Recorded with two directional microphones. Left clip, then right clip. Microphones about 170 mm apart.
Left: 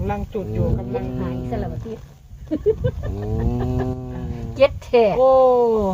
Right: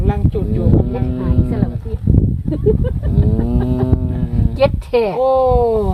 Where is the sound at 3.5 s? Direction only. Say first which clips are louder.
Right 5 dB; 60° right (ahead or behind).